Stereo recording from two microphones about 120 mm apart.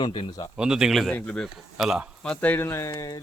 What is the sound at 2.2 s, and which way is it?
Speech, 15° left (ahead or behind).